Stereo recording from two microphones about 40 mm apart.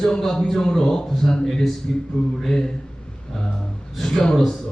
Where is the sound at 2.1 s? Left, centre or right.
Left.